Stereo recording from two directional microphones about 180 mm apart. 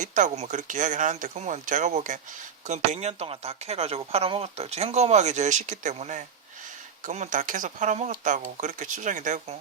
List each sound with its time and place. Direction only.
0.0 s speech: 45° right (ahead or behind)